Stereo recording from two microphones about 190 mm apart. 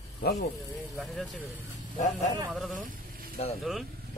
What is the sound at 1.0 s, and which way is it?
Speech, centre (ahead or behind).